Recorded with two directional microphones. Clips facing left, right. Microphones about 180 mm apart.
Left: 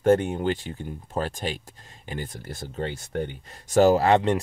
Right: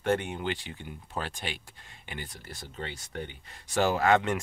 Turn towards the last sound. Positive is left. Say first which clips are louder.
# left 6 dB
turn(degrees=35)  # may be behind; listen again after turning